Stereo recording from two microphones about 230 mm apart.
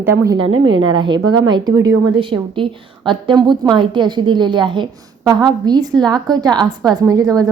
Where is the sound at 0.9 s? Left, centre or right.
Right.